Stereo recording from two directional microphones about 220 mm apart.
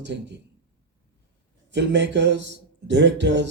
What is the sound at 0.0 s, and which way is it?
Speech, 55° right (ahead or behind).